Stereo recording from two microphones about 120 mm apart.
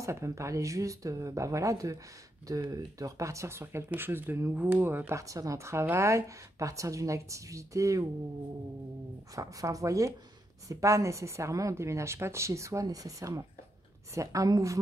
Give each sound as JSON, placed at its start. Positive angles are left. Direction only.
{"t": 0.0, "sound": "speech", "side_deg": -25}
{"t": 9.3, "sound": "speech", "side_deg": -30}